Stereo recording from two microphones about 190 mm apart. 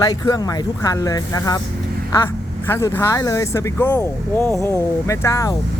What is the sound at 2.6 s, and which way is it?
Speech, 15° left (ahead or behind).